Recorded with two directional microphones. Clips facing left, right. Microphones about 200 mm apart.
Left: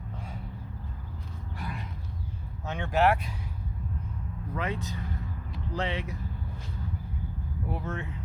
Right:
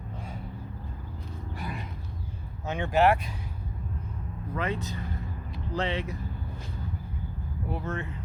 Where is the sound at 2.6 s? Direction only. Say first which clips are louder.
Right 2 dB; 5° right (ahead or behind).